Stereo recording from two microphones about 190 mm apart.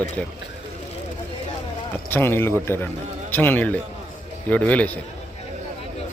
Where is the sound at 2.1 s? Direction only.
10° left (ahead or behind).